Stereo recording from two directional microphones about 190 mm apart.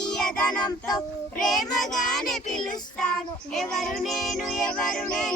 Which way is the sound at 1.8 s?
Centre (ahead or behind).